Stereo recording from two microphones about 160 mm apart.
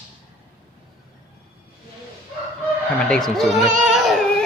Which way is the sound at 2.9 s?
5° left (ahead or behind).